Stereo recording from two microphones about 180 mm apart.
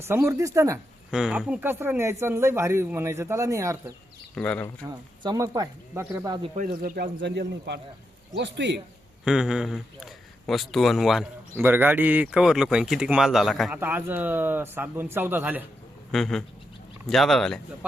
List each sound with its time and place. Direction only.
0.0 s speech: 15° right (ahead or behind)
1.1 s speech: 5° right (ahead or behind)
4.4 s speech: 5° left (ahead or behind)
4.9 s speech: 20° right (ahead or behind)
6.6 s a man's voice: 50° right (ahead or behind); by 8.8 s 80° right
9.2 s speech: 5° right (ahead or behind)
11.5 s speech: 10° right (ahead or behind)
16.1 s speech: centre (ahead or behind)